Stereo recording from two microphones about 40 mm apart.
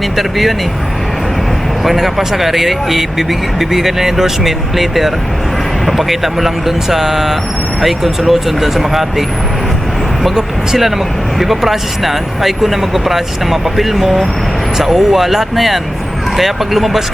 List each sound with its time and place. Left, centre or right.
0.2 s speech: centre
1.8 s speech: centre
10.3 s speech: centre
10.8 s speech: centre